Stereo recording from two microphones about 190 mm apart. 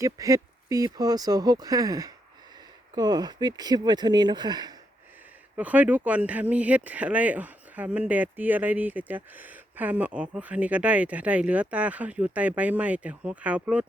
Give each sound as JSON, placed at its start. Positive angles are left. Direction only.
{"t": 0.0, "sound": "speech", "side_deg": -20}
{"t": 5.5, "sound": "speech", "side_deg": -10}